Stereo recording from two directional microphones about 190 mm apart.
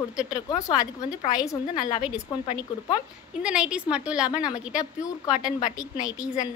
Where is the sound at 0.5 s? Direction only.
15° left (ahead or behind).